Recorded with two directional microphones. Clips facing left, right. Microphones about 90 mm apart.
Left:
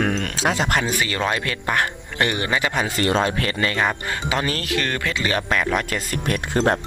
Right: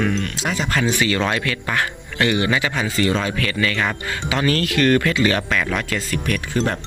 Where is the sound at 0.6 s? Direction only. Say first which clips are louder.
Right 3 dB; 20° left (ahead or behind).